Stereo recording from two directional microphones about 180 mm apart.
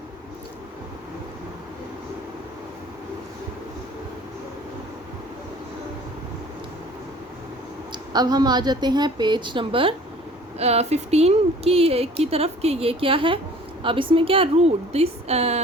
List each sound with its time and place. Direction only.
7.9 s a woman's voice: 25° right (ahead or behind)